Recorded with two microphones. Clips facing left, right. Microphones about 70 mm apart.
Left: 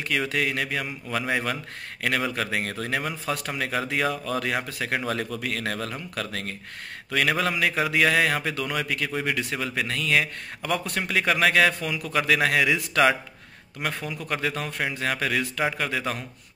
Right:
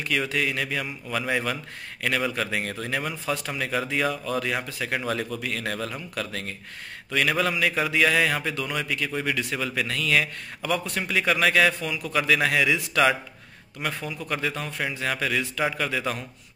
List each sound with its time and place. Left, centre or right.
0.1 s a man's voice: left